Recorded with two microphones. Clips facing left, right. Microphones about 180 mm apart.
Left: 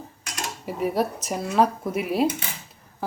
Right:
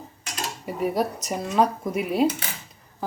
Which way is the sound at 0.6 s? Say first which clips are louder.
Even; centre (ahead or behind).